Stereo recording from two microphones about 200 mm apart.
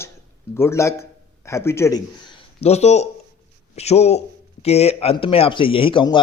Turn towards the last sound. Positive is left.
turn(degrees=25)  # may be behind; listen again after turning